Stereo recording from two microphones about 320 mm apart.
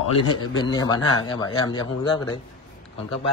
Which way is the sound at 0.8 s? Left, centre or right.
Centre.